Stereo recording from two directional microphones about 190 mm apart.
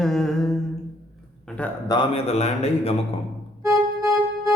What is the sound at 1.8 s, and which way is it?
A man's voice, 25° left (ahead or behind).